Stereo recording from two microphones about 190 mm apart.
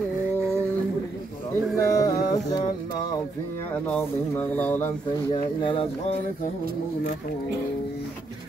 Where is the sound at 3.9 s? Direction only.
10° left (ahead or behind).